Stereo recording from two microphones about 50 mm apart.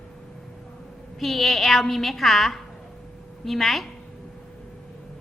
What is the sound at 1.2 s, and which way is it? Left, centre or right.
A woman's voice, centre.